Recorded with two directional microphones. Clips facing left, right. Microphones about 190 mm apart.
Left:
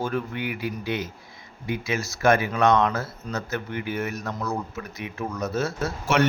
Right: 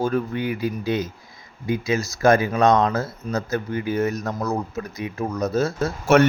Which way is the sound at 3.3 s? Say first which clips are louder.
Right 5 dB; 35° right (ahead or behind).